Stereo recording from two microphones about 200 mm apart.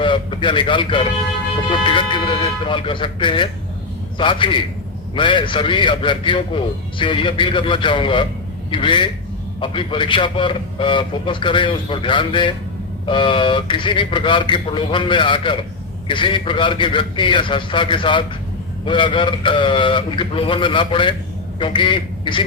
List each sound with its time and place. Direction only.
0.0 s a man's voice: 25° left (ahead or behind)